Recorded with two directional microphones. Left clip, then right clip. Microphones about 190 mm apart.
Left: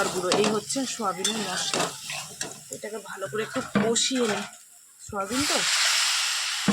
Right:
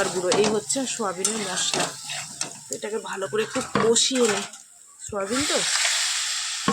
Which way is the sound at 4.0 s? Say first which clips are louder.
Right 4 dB; 10° right (ahead or behind).